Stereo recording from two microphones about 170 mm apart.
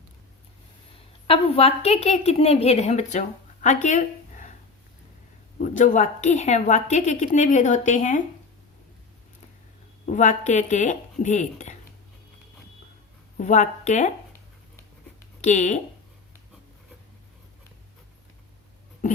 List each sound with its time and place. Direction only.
1.3 s a woman's voice: 35° left (ahead or behind)
5.5 s a woman's voice: 50° left (ahead or behind)
10.1 s a woman's voice: 45° left (ahead or behind)
13.3 s a woman's voice: 45° left (ahead or behind)
15.4 s speech: 45° left (ahead or behind)
19.0 s dog: 45° left (ahead or behind)